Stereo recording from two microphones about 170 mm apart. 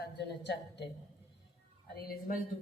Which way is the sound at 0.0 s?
85° left.